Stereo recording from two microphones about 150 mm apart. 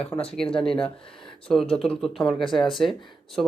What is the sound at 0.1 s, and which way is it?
Speech, 20° left (ahead or behind).